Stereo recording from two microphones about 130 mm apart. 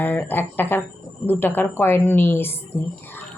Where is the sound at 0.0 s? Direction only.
15° left (ahead or behind).